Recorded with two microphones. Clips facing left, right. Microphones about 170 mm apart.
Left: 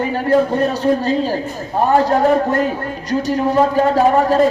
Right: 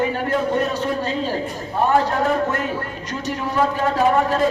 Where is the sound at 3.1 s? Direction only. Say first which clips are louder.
Left 10 dB; 35° left (ahead or behind).